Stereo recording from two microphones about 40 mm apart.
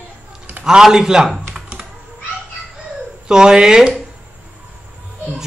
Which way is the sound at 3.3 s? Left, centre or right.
Centre.